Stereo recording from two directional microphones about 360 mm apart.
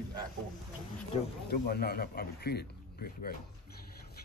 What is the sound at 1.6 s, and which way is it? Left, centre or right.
Speech, left.